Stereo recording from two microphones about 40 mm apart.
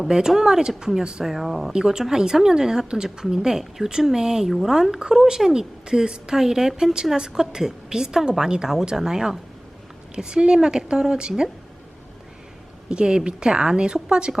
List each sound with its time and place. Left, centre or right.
0.1 s a woman's voice: centre
1.7 s a woman's voice: centre
12.9 s a woman's voice: right